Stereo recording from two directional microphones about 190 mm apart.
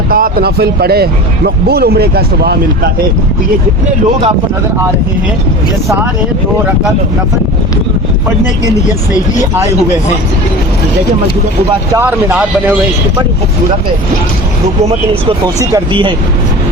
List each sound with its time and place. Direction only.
0.1 s speech: 50° right (ahead or behind)
11.9 s speech: 10° right (ahead or behind)
15.7 s speech: 25° right (ahead or behind)